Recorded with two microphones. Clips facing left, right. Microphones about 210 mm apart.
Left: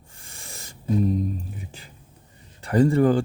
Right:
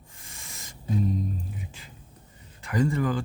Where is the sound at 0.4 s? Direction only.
35° left (ahead or behind).